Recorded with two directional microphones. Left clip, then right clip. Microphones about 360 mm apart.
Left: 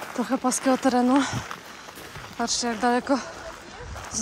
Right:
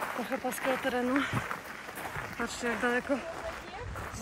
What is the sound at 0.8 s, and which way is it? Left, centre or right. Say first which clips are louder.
Speech: left 9 dB; centre.